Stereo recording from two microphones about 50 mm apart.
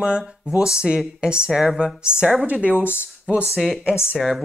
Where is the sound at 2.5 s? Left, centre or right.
Right.